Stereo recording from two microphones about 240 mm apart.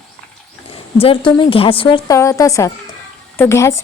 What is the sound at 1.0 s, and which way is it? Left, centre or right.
A woman's voice, left.